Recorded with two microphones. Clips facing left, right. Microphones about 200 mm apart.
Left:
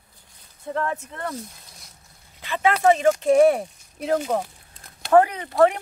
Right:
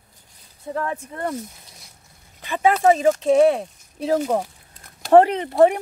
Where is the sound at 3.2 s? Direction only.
Centre (ahead or behind).